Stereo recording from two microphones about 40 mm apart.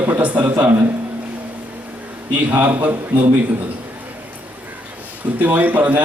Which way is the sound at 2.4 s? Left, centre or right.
Right.